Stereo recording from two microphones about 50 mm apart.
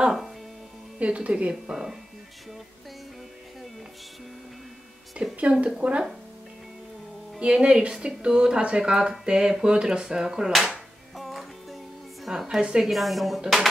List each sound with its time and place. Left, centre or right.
0.9 s speech: right
1.5 s speech: centre
5.4 s speech: right
7.3 s speech: centre
11.1 s music: centre
12.3 s speech: centre
12.9 s speech: centre